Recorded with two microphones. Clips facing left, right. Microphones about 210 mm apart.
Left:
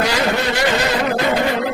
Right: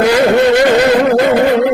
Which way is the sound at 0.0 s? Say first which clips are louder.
Right 10 dB; 55° right (ahead or behind).